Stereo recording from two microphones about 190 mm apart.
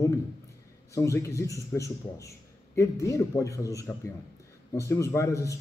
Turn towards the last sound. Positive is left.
turn(degrees=15)  # may be behind; listen again after turning